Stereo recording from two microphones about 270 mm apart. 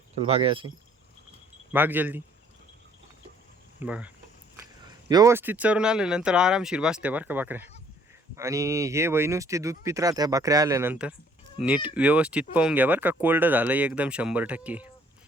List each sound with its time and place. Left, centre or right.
0.3 s speech: right
1.7 s speech: centre
3.8 s speech: centre